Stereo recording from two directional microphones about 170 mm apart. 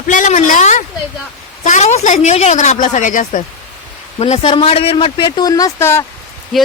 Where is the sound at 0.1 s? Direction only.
45° left (ahead or behind).